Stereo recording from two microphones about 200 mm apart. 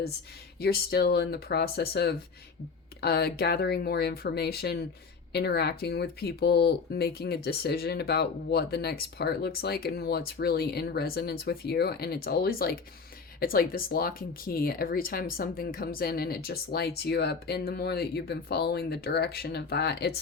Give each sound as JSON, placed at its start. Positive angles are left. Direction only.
{"t": 0.6, "sound": "speech", "side_deg": 50}